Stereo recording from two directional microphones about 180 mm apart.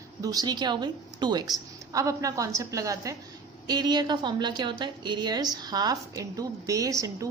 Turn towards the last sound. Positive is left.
turn(degrees=-15)  # may be behind; listen again after turning